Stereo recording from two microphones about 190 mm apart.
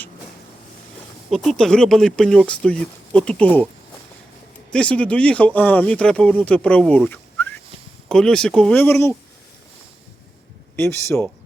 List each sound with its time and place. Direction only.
1.3 s speech: centre (ahead or behind)
4.7 s speech: 5° left (ahead or behind)
10.8 s speech: 15° left (ahead or behind)